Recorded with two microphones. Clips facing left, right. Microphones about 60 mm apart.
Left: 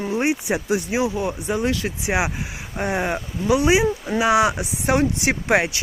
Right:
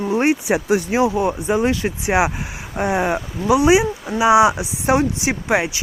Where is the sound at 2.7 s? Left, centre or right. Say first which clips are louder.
Right 4 dB; centre.